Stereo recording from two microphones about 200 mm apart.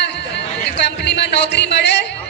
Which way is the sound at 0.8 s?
60° left (ahead or behind).